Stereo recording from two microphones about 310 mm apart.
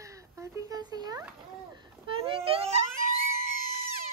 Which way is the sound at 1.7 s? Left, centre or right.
Centre.